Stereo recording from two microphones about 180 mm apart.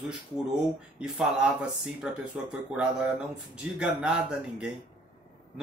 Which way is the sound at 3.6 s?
5° right (ahead or behind).